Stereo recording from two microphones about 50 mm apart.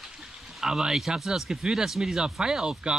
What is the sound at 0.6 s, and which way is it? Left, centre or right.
Speech, centre.